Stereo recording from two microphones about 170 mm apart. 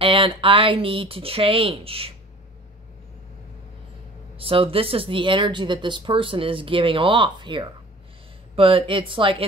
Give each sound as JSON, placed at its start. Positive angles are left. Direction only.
{"t": 0.0, "sound": "speech", "side_deg": -30}
{"t": 4.4, "sound": "speech", "side_deg": -30}